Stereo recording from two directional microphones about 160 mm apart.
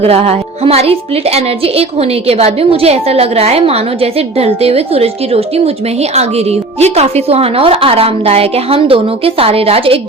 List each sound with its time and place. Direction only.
0.0 s a woman's voice: 40° right (ahead or behind)